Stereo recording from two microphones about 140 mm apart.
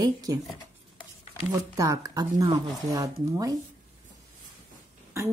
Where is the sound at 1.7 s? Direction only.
25° right (ahead or behind).